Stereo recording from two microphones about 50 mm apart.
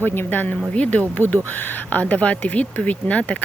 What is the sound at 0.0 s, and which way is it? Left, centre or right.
Speech, left.